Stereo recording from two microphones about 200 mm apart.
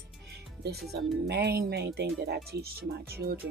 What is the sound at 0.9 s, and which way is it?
Speech, 55° right (ahead or behind).